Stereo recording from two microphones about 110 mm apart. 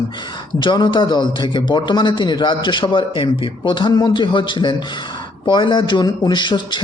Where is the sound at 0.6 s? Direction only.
45° left (ahead or behind).